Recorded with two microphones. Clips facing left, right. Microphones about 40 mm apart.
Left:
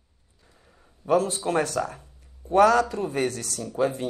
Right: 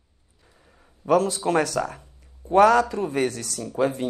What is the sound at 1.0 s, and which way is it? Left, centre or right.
A man's voice, right.